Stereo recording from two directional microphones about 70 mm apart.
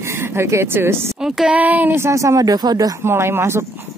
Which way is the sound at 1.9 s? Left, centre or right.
Right.